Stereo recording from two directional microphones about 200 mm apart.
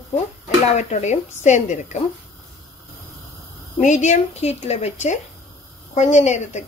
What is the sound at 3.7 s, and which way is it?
Speech, 35° left (ahead or behind).